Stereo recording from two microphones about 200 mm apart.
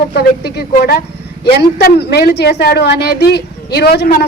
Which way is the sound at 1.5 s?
55° left (ahead or behind).